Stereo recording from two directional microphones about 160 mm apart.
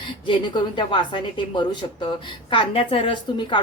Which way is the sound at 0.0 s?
30° left (ahead or behind).